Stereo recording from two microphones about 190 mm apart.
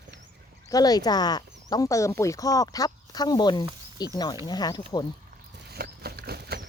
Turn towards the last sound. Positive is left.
turn(degrees=-55)  # may be behind; listen again after turning